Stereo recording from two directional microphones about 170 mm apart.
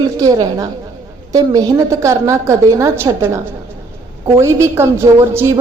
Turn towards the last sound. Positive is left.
turn(degrees=-15)  # may be behind; listen again after turning